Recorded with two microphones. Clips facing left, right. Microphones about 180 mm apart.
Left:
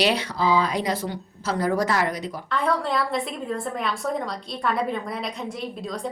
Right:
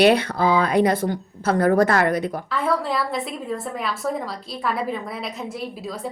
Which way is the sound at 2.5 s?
Centre (ahead or behind).